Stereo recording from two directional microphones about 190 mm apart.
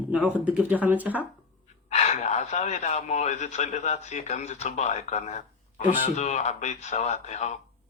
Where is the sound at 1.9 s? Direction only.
35° left (ahead or behind).